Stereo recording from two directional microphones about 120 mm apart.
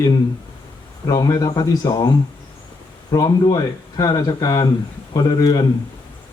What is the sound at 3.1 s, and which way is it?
Speech, 35° left (ahead or behind).